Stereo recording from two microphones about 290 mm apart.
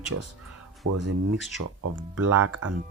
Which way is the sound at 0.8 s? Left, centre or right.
Right.